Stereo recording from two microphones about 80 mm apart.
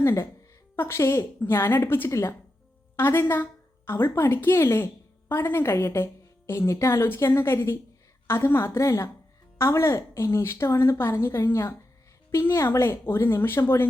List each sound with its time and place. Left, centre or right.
0.0 s a woman's voice: left
2.0 s a woman's voice: left